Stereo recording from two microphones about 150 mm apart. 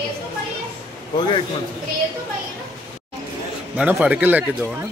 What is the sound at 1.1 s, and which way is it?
Speech, 30° left (ahead or behind).